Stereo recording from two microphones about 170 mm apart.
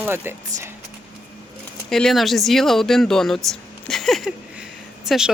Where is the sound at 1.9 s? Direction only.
Centre (ahead or behind).